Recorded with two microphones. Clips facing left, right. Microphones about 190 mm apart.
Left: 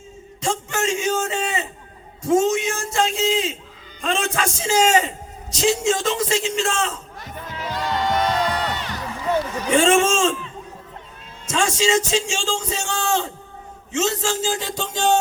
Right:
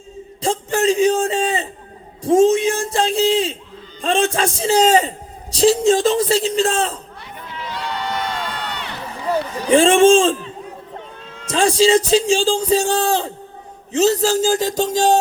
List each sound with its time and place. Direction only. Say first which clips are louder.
0.4 s a man's voice: right 6 dB; 35° right (ahead or behind)
7.4 s crowd: left 1 dB; 45° left (ahead or behind)
9.6 s a man's voice: right 6 dB; 30° right (ahead or behind)